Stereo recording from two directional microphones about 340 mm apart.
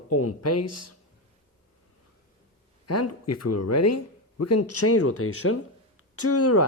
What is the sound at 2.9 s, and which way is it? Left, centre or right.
Speech, left.